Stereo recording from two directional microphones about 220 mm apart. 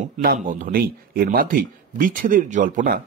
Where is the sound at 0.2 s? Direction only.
40° right (ahead or behind).